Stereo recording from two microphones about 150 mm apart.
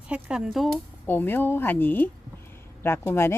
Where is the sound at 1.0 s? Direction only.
15° left (ahead or behind).